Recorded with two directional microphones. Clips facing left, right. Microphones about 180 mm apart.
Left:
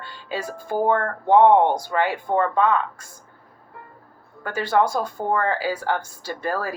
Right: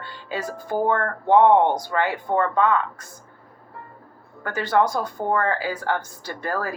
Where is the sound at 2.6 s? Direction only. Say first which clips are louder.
Even; 25° left (ahead or behind).